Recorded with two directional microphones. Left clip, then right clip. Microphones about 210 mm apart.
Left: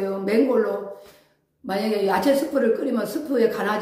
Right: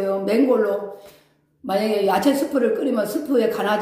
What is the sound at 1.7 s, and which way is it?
A woman's voice, 15° right (ahead or behind).